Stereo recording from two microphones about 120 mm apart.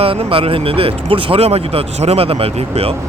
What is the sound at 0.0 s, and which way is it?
Speech, 50° right (ahead or behind).